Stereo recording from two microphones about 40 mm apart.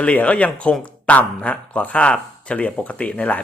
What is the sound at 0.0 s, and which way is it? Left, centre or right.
Speech, left.